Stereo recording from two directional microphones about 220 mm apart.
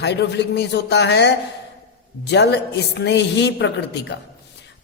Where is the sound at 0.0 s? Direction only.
50° left (ahead or behind).